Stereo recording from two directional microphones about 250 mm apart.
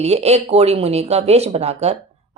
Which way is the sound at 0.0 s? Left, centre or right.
Right.